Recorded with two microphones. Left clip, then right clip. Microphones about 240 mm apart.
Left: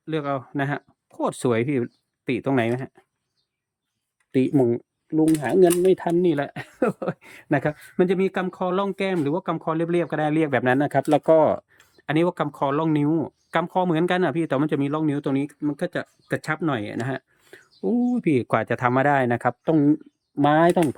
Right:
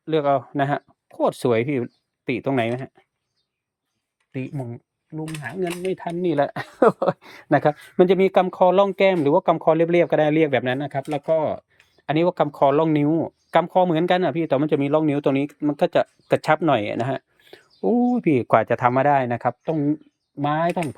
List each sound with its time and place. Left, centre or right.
0.0 s speech: centre
4.3 s speech: left
6.3 s speech: centre
12.0 s speech: centre